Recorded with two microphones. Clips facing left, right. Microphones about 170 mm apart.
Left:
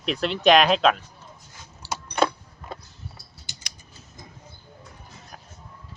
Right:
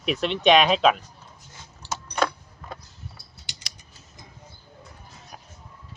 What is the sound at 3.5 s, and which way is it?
Typing, 70° right (ahead or behind).